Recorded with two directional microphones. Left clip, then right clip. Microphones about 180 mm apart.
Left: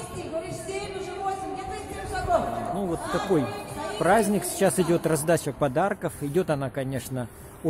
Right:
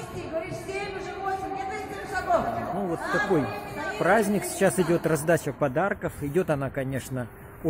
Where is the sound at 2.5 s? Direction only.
10° left (ahead or behind).